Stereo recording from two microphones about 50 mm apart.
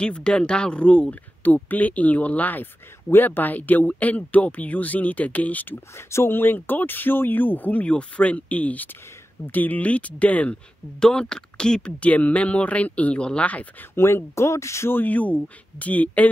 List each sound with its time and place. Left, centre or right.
0.0 s speech: centre
5.9 s speech: left
11.0 s speech: centre
13.9 s speech: left
14.9 s speech: left